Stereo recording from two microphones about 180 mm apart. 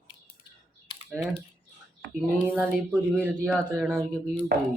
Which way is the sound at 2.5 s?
5° right (ahead or behind).